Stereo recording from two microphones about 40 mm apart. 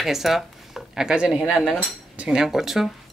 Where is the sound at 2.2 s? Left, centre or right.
Centre.